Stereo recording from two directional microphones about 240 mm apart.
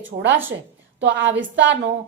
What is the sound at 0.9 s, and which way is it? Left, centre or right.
Speech, right.